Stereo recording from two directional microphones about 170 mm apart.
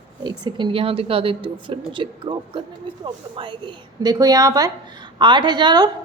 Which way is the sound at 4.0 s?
20° right (ahead or behind).